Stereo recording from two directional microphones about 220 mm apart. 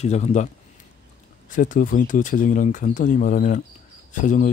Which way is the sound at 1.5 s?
35° left (ahead or behind).